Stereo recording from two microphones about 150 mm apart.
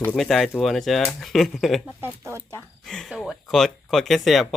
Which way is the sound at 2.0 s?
15° right (ahead or behind).